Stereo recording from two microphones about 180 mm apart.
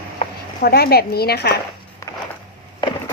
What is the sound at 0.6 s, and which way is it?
Speech, 60° left (ahead or behind).